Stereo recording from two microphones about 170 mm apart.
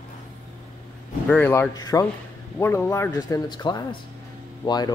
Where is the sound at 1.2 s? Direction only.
10° left (ahead or behind).